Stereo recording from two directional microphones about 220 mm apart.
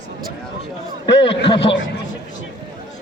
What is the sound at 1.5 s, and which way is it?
Speech, 25° left (ahead or behind).